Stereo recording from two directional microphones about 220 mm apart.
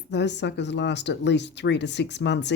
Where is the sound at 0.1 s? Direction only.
50° left (ahead or behind).